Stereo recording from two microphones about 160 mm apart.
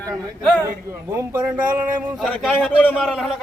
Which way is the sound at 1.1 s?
15° right (ahead or behind).